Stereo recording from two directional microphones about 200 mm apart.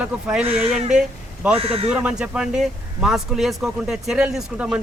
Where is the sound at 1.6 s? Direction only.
30° right (ahead or behind).